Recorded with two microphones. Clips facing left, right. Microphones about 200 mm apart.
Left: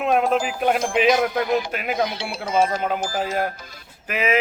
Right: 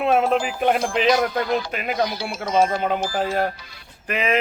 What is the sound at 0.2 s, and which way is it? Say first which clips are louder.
Speech: right 1 dB; 5° left (ahead or behind).